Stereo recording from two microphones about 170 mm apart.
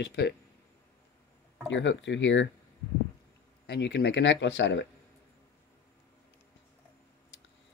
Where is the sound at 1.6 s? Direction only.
90° left.